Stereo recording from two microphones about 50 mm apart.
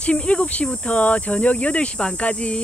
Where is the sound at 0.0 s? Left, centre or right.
Left.